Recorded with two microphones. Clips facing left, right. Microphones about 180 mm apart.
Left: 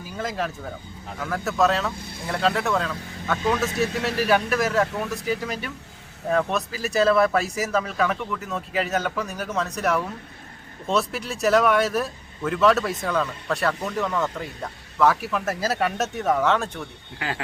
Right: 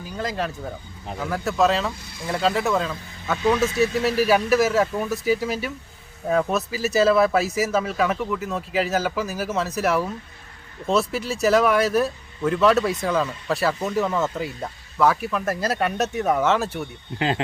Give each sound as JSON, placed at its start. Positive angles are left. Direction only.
{"t": 0.2, "sound": "speech", "side_deg": 0}
{"t": 17.2, "sound": "speech", "side_deg": -25}